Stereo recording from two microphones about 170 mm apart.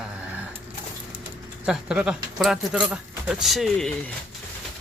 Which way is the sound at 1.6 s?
5° right (ahead or behind).